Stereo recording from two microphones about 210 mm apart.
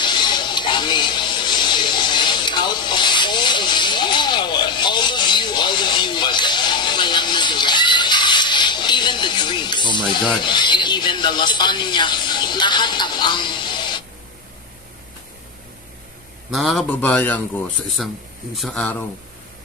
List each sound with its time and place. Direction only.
0.0 s a sound: 20° left (ahead or behind)
16.5 s a man's voice: centre (ahead or behind)
18.5 s a man's voice: centre (ahead or behind)